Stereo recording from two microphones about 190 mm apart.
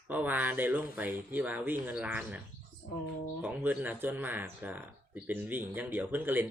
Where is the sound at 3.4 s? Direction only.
10° right (ahead or behind).